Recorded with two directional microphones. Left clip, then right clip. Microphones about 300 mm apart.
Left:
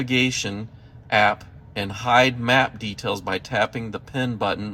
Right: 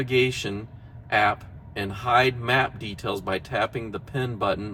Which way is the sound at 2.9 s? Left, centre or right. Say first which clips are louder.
Left 2 dB; left.